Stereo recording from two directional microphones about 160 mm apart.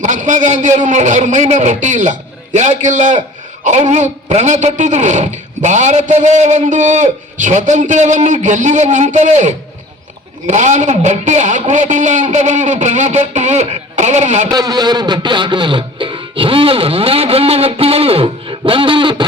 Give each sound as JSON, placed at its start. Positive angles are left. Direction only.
{"t": 0.0, "sound": "a man's voice", "side_deg": -50}
{"t": 14.5, "sound": "music", "side_deg": -25}